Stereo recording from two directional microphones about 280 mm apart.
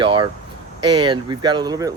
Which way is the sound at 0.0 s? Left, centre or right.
Centre.